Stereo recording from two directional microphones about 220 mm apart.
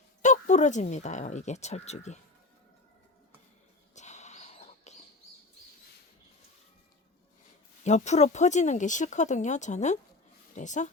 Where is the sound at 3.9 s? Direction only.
30° left (ahead or behind).